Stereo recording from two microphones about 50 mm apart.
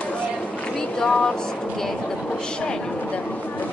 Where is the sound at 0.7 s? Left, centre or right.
Centre.